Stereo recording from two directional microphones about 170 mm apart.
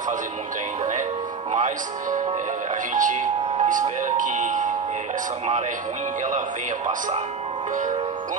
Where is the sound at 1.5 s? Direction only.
50° right (ahead or behind).